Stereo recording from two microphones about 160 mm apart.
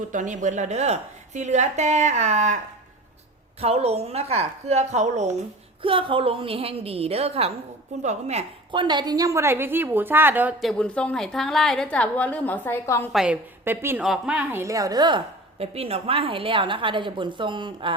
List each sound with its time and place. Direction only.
0.1 s a woman's voice: 50° right (ahead or behind)
3.6 s a woman's voice: 40° right (ahead or behind)
5.8 s a woman's voice: 35° right (ahead or behind)
8.7 s a woman's voice: 30° right (ahead or behind); by 10.5 s 10° right (ahead or behind)
10.6 s a woman's voice: 5° left (ahead or behind)
13.1 s a woman's voice: 5° right (ahead or behind)
14.6 s a woman's voice: 20° right (ahead or behind)